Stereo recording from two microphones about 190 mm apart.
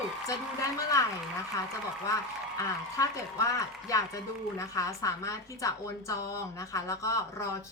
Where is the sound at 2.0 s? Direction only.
15° left (ahead or behind).